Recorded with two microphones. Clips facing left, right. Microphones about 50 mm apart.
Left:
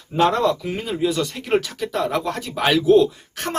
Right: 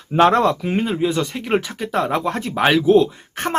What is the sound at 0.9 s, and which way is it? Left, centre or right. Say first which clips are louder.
Speech: right 2 dB; right.